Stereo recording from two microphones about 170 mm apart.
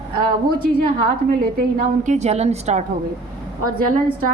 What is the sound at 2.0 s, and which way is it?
Speech, 45° right (ahead or behind).